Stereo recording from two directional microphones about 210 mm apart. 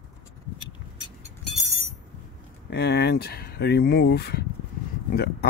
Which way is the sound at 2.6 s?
55° left (ahead or behind).